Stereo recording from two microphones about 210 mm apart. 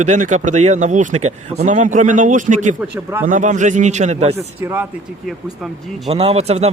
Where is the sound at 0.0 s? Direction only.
35° right (ahead or behind).